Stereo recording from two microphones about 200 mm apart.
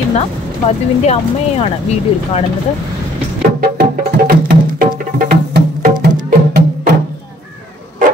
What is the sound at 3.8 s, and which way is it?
Music, 50° right (ahead or behind).